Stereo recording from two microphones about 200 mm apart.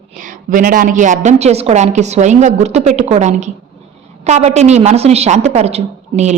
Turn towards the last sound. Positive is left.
turn(degrees=-35)  # may be behind; listen again after turning